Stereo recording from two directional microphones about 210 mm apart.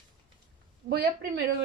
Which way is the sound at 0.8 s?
50° right (ahead or behind).